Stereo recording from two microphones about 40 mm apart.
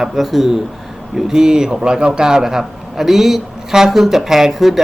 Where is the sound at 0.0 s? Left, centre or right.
Centre.